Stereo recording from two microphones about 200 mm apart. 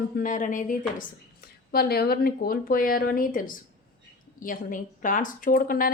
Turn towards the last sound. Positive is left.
turn(degrees=45)  # may be behind; listen again after turning